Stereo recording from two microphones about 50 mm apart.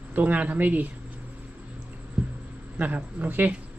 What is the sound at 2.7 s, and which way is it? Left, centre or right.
Speech, right.